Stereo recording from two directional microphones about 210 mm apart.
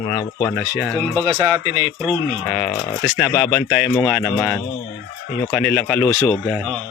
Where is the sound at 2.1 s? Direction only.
5° left (ahead or behind).